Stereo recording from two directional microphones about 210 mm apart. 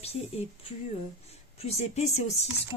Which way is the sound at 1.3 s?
30° left (ahead or behind).